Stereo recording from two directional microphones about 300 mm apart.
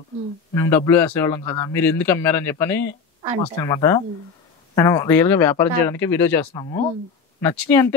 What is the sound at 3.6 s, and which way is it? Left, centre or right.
Speech, centre.